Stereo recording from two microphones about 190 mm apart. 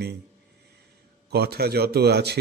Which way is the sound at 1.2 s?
55° right (ahead or behind).